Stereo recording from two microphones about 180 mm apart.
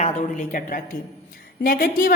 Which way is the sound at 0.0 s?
40° left (ahead or behind).